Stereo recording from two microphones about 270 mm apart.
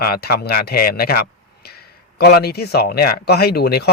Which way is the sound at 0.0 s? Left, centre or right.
Left.